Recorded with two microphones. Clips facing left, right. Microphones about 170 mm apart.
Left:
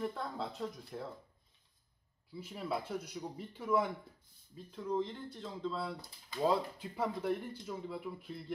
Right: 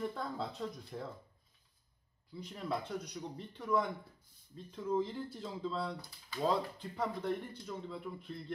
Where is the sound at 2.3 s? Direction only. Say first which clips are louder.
Even; 5° left (ahead or behind).